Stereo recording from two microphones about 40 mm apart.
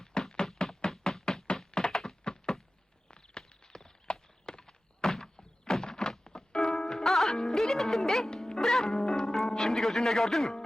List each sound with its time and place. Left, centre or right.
0.0 s knock: centre
0.8 s a sound: centre
1.2 s knock: centre
1.7 s computer keyboard: centre
2.2 s a sound: left
3.8 s thunk: centre
6.7 s music: centre